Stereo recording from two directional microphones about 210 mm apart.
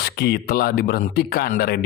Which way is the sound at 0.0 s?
50° left (ahead or behind).